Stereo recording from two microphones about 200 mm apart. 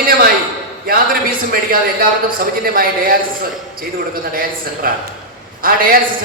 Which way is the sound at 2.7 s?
45° right (ahead or behind).